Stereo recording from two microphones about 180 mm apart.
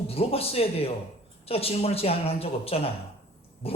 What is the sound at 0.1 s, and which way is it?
Speech, 35° left (ahead or behind).